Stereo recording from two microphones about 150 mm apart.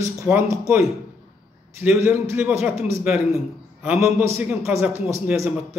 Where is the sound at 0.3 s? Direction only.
10° right (ahead or behind).